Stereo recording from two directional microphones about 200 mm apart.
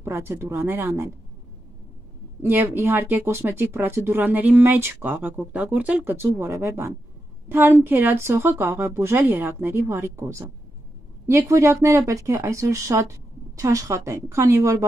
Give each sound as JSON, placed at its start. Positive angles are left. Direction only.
{"t": 0.0, "sound": "speech", "side_deg": -15}
{"t": 2.4, "sound": "speech", "side_deg": -10}